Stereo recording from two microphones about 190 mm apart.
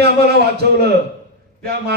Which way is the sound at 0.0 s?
55° right (ahead or behind).